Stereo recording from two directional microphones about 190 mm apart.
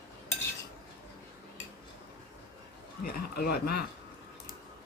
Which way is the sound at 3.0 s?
50° left (ahead or behind).